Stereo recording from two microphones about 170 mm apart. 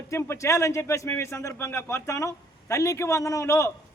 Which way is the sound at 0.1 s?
15° left (ahead or behind).